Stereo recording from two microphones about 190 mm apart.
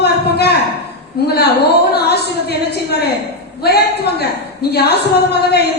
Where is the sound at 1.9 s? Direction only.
55° left (ahead or behind).